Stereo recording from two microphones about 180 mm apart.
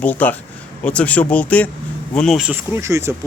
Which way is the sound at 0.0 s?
10° left (ahead or behind).